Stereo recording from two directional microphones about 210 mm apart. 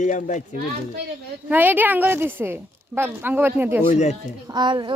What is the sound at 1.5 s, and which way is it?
A child's voice, 10° right (ahead or behind).